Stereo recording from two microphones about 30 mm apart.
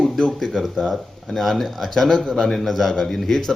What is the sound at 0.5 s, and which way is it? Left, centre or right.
Speech, centre.